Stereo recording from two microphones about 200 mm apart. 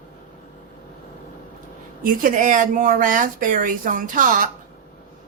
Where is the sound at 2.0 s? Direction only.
40° right (ahead or behind).